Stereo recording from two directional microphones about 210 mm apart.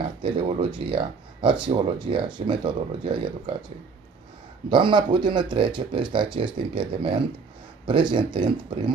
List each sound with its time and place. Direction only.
0.2 s speech: 25° right (ahead or behind)
4.6 s speech: 20° right (ahead or behind)